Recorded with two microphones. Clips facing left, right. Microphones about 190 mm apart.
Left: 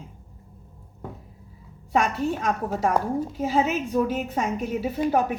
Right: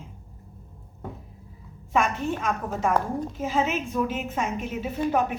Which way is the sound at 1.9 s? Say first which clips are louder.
Left 1 dB; 40° left (ahead or behind).